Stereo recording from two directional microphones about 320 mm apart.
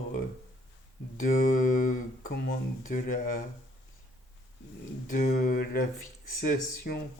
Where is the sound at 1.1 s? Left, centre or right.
Left.